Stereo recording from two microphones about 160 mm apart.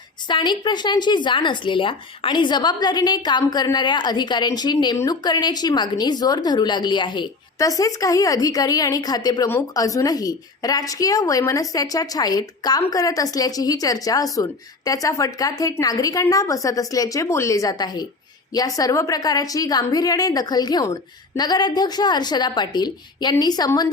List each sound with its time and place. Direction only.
0.3 s speech: 30° left (ahead or behind)